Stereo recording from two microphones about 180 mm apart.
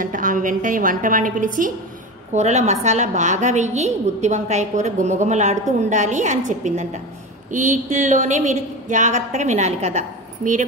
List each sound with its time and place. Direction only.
0.0 s a woman's voice: 45° right (ahead or behind)